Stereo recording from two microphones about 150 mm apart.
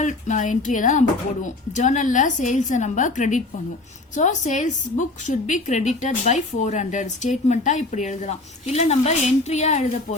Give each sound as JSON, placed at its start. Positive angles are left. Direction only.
{"t": 0.0, "sound": "a woman's voice", "side_deg": 55}